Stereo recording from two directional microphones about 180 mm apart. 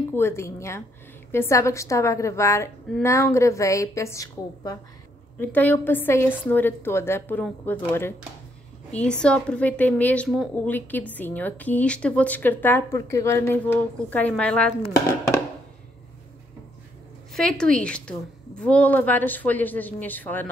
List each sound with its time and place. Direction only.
0.1 s a woman's voice: 15° left (ahead or behind)
14.9 s a woman's voice: 15° left (ahead or behind)
17.3 s a woman's voice: 5° left (ahead or behind)